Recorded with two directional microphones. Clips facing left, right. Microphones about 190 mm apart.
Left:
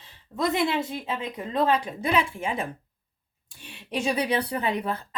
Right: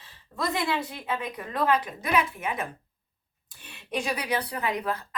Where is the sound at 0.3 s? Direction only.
20° left (ahead or behind).